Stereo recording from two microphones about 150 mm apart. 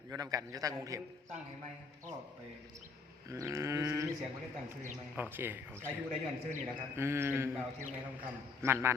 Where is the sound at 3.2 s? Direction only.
20° right (ahead or behind).